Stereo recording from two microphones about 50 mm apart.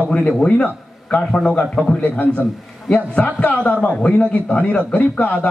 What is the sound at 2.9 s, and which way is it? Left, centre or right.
A man's voice, left.